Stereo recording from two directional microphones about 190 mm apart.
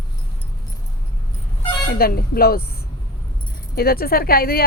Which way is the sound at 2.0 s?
50° left (ahead or behind).